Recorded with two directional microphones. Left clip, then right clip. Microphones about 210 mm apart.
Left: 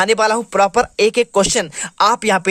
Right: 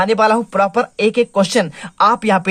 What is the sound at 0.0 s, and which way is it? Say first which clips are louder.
Speech: right 1 dB; 25° left (ahead or behind).